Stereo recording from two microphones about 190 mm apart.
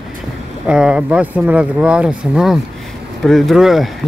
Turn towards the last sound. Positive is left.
turn(degrees=0)  # may be behind; listen again after turning